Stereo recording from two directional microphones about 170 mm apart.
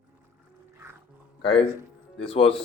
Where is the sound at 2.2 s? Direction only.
35° left (ahead or behind).